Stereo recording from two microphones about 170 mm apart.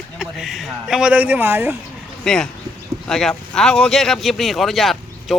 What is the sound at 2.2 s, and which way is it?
Speech, 5° left (ahead or behind).